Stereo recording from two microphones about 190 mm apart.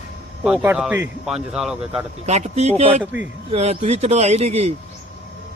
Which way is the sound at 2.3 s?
35° right (ahead or behind).